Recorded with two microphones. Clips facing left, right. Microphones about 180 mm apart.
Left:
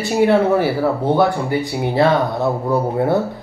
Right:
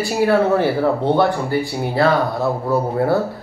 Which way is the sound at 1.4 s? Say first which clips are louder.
Left 1 dB; 20° left (ahead or behind).